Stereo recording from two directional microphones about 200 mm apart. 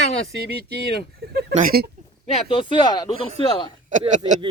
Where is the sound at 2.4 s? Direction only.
25° left (ahead or behind).